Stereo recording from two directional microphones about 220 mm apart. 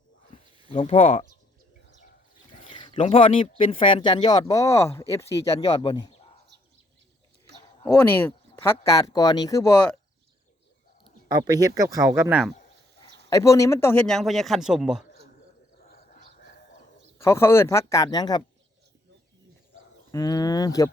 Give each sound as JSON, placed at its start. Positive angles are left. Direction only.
{"t": 0.7, "sound": "speech", "side_deg": 30}
{"t": 2.6, "sound": "speech", "side_deg": 20}
{"t": 7.5, "sound": "bird", "side_deg": -50}
{"t": 7.9, "sound": "speech", "side_deg": 10}
{"t": 11.3, "sound": "speech", "side_deg": -20}
{"t": 13.3, "sound": "speech", "side_deg": 15}
{"t": 15.8, "sound": "a sound", "side_deg": 40}
{"t": 17.2, "sound": "speech", "side_deg": 10}
{"t": 20.1, "sound": "speech", "side_deg": 15}